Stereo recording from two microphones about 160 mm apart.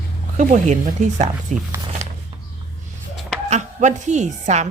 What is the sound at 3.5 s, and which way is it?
A woman's voice, 50° right (ahead or behind).